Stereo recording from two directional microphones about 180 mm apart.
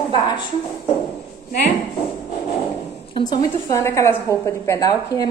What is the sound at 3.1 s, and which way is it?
A woman's voice, 25° left (ahead or behind).